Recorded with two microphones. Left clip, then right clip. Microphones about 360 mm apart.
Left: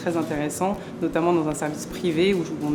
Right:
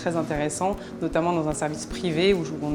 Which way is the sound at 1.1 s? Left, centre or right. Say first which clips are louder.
Left 2 dB; right.